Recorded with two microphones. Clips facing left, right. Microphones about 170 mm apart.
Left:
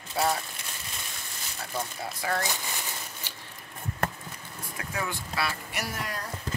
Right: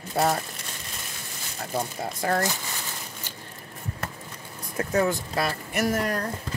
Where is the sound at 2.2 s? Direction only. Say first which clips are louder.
Right 5 dB; 50° right (ahead or behind).